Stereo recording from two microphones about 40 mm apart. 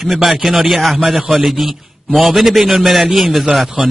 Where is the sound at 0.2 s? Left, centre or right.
Centre.